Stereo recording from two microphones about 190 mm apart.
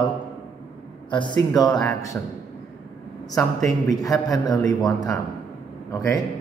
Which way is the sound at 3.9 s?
20° left (ahead or behind).